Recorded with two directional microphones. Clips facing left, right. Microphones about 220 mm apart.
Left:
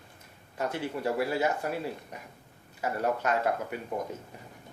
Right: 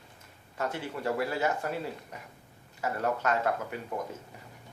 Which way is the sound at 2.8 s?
15° left (ahead or behind).